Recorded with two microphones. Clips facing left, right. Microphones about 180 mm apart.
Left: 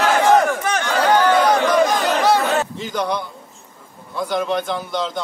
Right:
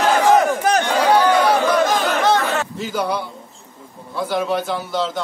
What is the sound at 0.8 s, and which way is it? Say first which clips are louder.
Chatter: left 2 dB; 10° right (ahead or behind).